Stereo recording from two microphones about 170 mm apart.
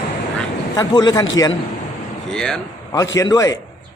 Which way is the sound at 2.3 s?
5° left (ahead or behind).